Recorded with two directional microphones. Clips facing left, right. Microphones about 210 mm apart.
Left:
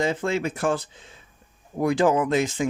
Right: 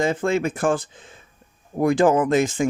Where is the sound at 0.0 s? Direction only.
50° right (ahead or behind).